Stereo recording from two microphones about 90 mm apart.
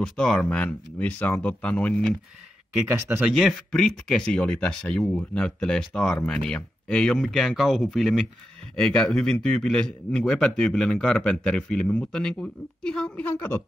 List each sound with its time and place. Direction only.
0.0 s speech: 10° left (ahead or behind)
2.9 s speech: 25° right (ahead or behind)
3.3 s speech: centre (ahead or behind)
13.2 s a woman's voice: 20° left (ahead or behind)